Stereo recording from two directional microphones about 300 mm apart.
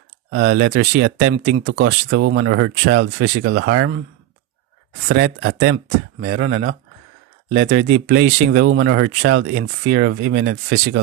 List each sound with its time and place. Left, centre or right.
0.3 s speech: right
1.6 s speech: right
5.0 s speech: right